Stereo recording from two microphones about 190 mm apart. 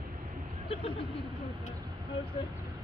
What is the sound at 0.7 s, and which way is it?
Speech, 30° left (ahead or behind).